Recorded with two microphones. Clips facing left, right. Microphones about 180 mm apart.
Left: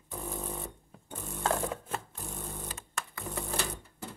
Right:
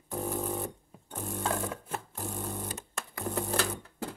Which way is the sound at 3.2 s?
70° right (ahead or behind).